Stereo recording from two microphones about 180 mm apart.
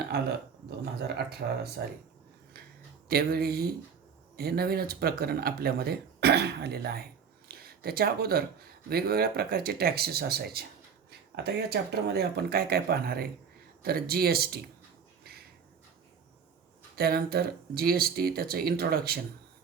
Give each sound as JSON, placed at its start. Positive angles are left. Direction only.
{"t": 1.0, "sound": "speech", "side_deg": -65}
{"t": 3.1, "sound": "speech", "side_deg": -55}
{"t": 15.2, "sound": "a sound", "side_deg": -55}
{"t": 17.0, "sound": "speech", "side_deg": -55}